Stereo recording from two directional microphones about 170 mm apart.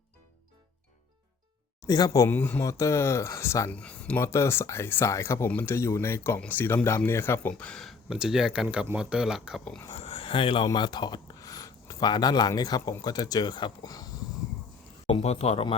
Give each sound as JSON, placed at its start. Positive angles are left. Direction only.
{"t": 1.9, "sound": "speech", "side_deg": 20}
{"t": 9.9, "sound": "speech", "side_deg": 35}
{"t": 15.0, "sound": "speech", "side_deg": 40}